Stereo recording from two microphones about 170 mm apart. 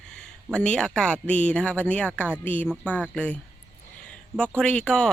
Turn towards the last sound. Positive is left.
turn(degrees=5)  # may be behind; listen again after turning